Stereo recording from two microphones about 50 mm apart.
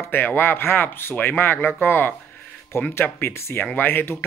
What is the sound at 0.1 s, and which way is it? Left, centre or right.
Speech, left.